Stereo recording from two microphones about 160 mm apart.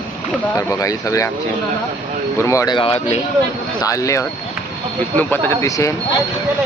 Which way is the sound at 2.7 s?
35° left (ahead or behind).